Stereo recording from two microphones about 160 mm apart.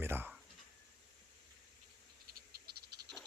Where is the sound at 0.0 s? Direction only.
15° right (ahead or behind).